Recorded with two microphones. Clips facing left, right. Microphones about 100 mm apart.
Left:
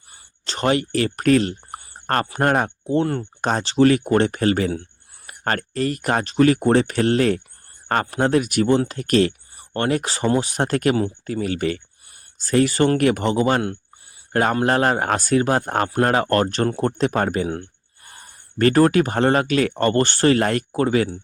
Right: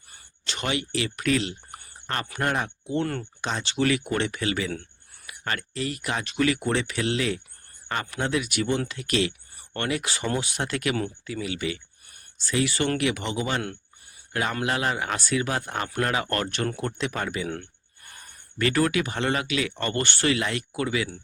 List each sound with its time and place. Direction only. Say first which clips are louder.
0.4 s speech: left 9 dB; 40° left (ahead or behind)
3.4 s speech: left 9 dB; 40° left (ahead or behind)
14.6 s speech: left 8 dB; 45° left (ahead or behind)
17.5 s a sound: left 6 dB; 30° left (ahead or behind)
18.6 s speech: left 8 dB; 40° left (ahead or behind)